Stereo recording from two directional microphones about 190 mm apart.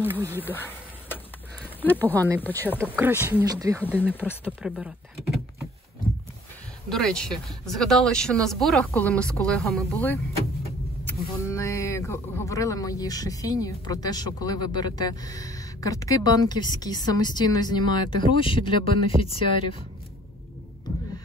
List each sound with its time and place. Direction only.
0.0 s speech: 10° right (ahead or behind)
0.5 s a sound: 10° left (ahead or behind)
1.8 s speech: 10° left (ahead or behind)
2.8 s speech: 10° right (ahead or behind)
4.1 s speech: 10° left (ahead or behind)
4.5 s speech: 5° right (ahead or behind)
6.9 s speech: 5° left (ahead or behind)
11.4 s speech: 15° left (ahead or behind)